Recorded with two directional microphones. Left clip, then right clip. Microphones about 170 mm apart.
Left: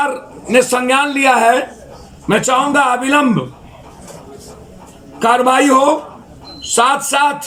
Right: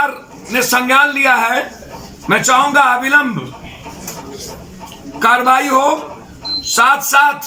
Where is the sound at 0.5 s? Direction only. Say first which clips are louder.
Even; 25° left (ahead or behind).